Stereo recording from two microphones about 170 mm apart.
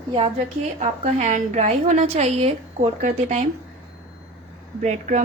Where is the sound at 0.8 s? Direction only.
45° right (ahead or behind).